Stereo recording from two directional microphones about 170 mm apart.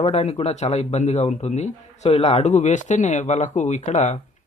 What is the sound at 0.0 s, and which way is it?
Speech, 35° left (ahead or behind).